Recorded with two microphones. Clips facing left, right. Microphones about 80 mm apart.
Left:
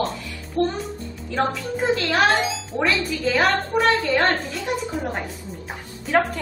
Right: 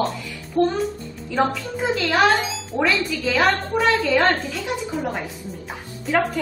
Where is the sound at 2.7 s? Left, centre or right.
Right.